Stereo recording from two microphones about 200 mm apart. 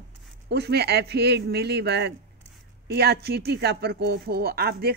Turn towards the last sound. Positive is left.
turn(degrees=-50)  # may be behind; listen again after turning